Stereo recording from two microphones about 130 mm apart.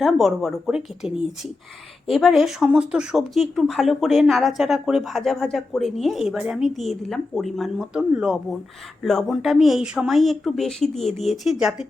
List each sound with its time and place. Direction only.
0.0 s speech: centre (ahead or behind)